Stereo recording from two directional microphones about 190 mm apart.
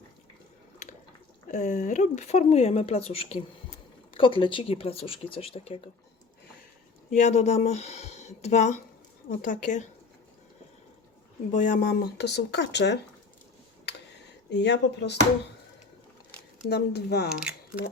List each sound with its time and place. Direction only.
1.5 s speech: 40° left (ahead or behind)
7.1 s speech: 35° left (ahead or behind)
11.5 s speech: 45° left (ahead or behind); by 13.0 s 65° left (ahead or behind)
14.5 s speech: 65° left (ahead or behind)
16.6 s speech: 60° left (ahead or behind)